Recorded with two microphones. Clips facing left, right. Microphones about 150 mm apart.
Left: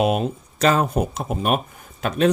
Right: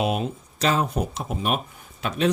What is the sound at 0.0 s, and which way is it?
Speech, 50° left (ahead or behind).